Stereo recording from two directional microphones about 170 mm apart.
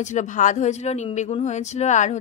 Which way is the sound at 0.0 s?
45° left (ahead or behind).